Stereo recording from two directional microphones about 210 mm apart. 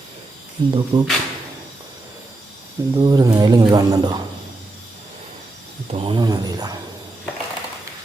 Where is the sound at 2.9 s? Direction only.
20° right (ahead or behind).